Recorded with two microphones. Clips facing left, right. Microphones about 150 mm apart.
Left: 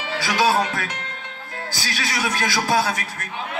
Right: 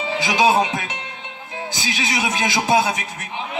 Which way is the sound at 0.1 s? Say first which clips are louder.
Right 2 dB; 20° right (ahead or behind).